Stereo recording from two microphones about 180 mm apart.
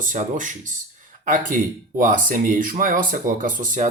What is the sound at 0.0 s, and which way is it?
Speech, 45° right (ahead or behind).